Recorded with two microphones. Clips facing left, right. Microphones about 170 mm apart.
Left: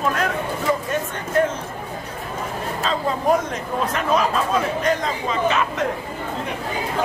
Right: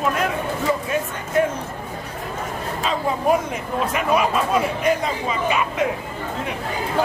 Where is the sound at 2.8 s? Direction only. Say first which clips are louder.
Right 1 dB; 10° right (ahead or behind).